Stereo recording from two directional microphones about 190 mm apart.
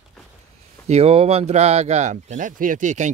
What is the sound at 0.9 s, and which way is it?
Speech, 30° right (ahead or behind).